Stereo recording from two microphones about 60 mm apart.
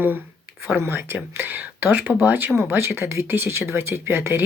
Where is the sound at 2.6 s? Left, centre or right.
Right.